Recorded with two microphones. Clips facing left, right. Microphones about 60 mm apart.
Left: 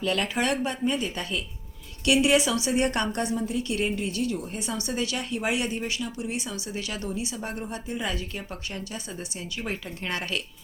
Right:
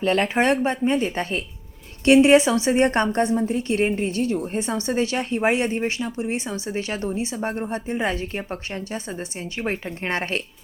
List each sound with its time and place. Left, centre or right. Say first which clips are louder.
0.0 s a woman's voice: right 6 dB; right